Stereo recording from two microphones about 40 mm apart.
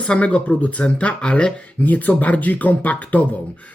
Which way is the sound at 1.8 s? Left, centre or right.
Left.